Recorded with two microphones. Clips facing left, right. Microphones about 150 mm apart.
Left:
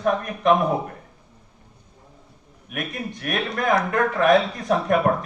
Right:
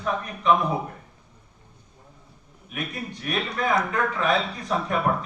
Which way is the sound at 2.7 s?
60° left (ahead or behind).